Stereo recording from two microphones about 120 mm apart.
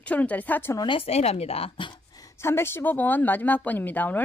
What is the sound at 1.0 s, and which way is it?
Speech, 60° left (ahead or behind).